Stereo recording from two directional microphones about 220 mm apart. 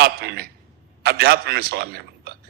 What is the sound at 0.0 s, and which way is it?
A man's voice, 45° right (ahead or behind).